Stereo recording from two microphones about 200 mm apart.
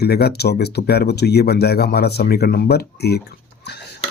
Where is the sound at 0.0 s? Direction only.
50° left (ahead or behind).